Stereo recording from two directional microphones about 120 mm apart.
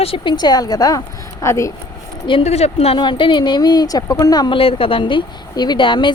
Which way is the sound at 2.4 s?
60° left (ahead or behind).